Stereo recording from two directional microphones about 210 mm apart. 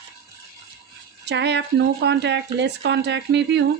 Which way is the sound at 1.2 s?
55° right (ahead or behind).